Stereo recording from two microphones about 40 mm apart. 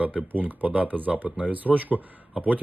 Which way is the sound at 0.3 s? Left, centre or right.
Right.